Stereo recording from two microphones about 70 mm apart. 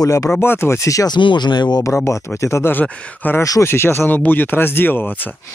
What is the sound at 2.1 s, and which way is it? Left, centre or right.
Speech, left.